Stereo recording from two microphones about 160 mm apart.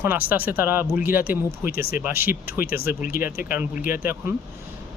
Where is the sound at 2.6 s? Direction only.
65° left (ahead or behind).